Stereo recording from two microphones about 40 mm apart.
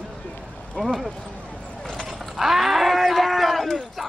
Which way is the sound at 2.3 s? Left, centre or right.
Centre.